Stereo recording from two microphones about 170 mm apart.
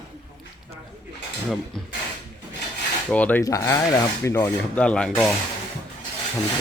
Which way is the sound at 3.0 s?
10° left (ahead or behind).